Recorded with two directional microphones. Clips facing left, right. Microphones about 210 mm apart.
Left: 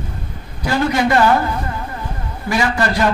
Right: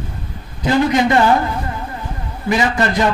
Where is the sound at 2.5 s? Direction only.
20° right (ahead or behind).